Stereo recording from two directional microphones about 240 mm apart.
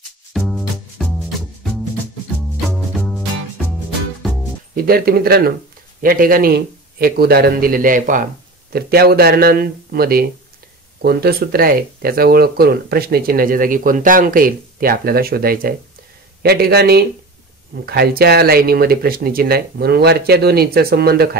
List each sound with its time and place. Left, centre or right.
0.3 s music: centre
2.7 s music: centre
4.7 s speech: right